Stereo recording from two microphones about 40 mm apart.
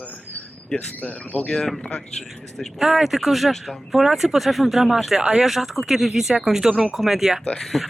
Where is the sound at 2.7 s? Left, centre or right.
Centre.